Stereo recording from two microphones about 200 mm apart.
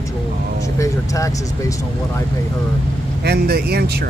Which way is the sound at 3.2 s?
50° right (ahead or behind).